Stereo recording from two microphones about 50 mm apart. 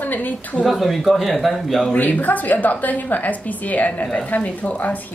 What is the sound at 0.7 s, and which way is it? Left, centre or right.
A man's voice, centre.